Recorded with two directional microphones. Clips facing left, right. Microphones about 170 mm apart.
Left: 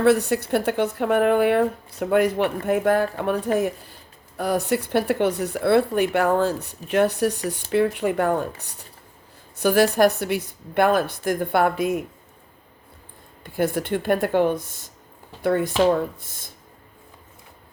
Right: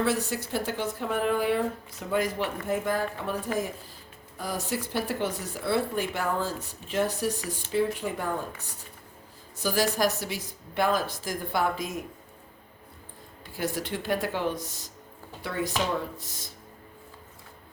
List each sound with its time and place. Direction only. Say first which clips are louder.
0.0 s speech: left 9 dB; 65° left (ahead or behind)
9.6 s speech: left 9 dB; 60° left (ahead or behind)
13.4 s speech: left 8 dB; 55° left (ahead or behind)